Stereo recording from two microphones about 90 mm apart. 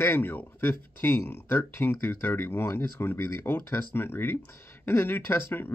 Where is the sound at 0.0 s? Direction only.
25° left (ahead or behind).